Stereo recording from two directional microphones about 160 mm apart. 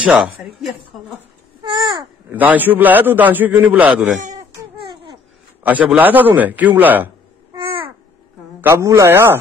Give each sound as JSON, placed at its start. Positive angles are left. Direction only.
{"t": 0.0, "sound": "speech", "side_deg": -5}
{"t": 1.6, "sound": "speech", "side_deg": -30}
{"t": 2.2, "sound": "a man's voice", "side_deg": -10}
{"t": 4.4, "sound": "baby cry", "side_deg": -20}
{"t": 5.6, "sound": "a man's voice", "side_deg": -10}
{"t": 8.5, "sound": "a man's voice", "side_deg": -15}